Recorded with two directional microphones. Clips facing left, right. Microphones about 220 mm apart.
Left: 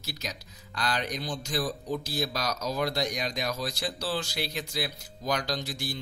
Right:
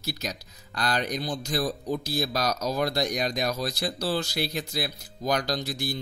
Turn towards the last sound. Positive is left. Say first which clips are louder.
# right 3 dB
turn(degrees=-40)  # may be behind; listen again after turning